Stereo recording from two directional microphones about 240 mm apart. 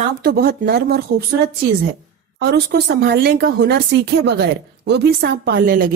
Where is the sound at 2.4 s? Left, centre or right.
Right.